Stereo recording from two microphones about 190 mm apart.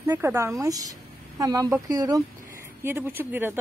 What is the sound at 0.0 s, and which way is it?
A woman's voice, 10° right (ahead or behind).